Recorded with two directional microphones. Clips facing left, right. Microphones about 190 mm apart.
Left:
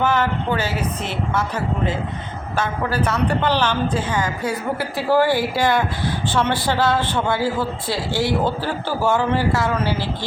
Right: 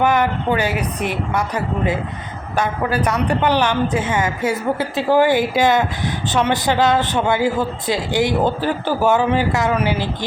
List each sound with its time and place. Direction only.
0.0 s a woman's voice: 15° right (ahead or behind)